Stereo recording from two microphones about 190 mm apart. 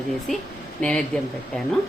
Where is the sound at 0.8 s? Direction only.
5° left (ahead or behind).